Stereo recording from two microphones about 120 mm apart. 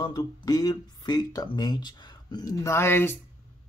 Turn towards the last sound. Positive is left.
turn(degrees=20)  # may be behind; listen again after turning